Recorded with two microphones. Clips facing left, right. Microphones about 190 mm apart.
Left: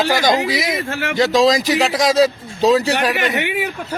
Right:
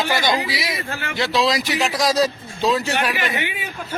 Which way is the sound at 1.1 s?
45° left (ahead or behind).